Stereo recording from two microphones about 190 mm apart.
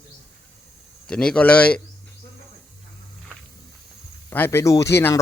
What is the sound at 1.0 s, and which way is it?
Speech, 5° left (ahead or behind).